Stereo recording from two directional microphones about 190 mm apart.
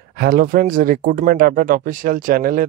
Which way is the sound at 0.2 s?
50° right (ahead or behind).